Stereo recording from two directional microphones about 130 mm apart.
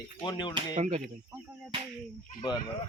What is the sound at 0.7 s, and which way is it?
Speech, 65° right (ahead or behind).